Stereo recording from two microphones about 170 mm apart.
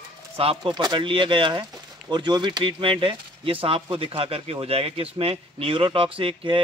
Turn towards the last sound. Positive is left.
turn(degrees=-30)  # may be behind; listen again after turning